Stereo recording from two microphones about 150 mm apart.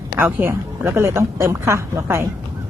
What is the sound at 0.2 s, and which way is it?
A woman's voice, 15° right (ahead or behind).